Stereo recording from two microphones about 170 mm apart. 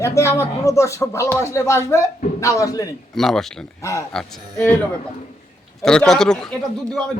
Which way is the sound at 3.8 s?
15° left (ahead or behind).